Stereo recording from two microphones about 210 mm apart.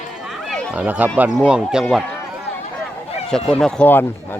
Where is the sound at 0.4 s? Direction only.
Centre (ahead or behind).